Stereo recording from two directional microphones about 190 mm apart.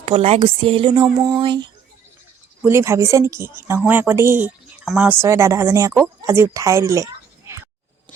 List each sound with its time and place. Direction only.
0.0 s speech: 30° right (ahead or behind)